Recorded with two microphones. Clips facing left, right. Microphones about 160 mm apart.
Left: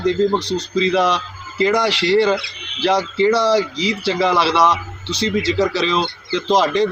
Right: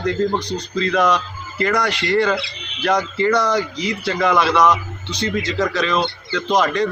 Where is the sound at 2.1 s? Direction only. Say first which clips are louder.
Left 2 dB; 30° left (ahead or behind).